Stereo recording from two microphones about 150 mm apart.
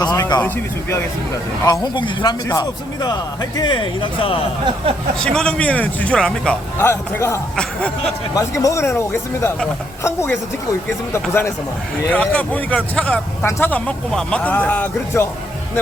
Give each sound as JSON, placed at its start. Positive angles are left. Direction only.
{"t": 0.0, "sound": "a sound", "side_deg": 25}
{"t": 0.4, "sound": "speech", "side_deg": 20}
{"t": 5.2, "sound": "speech", "side_deg": 5}
{"t": 6.8, "sound": "speech", "side_deg": 20}
{"t": 7.5, "sound": "speech", "side_deg": 5}
{"t": 8.4, "sound": "speech", "side_deg": 20}